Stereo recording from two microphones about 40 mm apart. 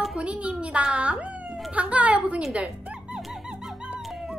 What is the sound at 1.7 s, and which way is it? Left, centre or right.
Speech, right.